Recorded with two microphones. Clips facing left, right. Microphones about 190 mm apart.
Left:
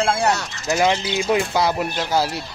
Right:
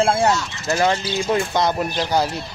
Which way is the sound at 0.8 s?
15° left (ahead or behind).